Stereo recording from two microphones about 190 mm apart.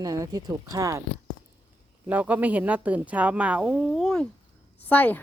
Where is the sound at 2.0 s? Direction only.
10° right (ahead or behind).